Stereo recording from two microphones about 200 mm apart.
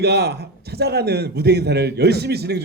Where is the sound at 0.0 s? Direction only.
55° right (ahead or behind).